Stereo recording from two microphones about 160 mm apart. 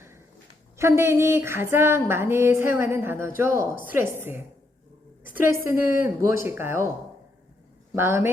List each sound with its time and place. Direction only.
0.8 s a woman's voice: 15° right (ahead or behind)
7.9 s a woman's voice: 15° right (ahead or behind)